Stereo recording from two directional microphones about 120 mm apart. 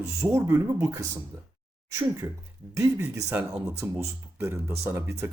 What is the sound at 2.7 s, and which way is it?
Speech, 25° right (ahead or behind).